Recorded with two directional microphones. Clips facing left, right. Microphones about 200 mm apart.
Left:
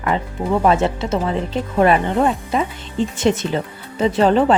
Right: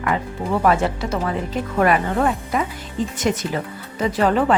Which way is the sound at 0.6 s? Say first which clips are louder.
Left 1 dB; 25° left (ahead or behind).